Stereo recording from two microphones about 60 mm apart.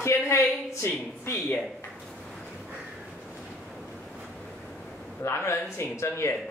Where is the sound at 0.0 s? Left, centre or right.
Left.